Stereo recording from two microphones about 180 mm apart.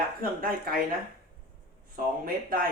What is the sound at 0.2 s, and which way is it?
Speech, 55° right (ahead or behind).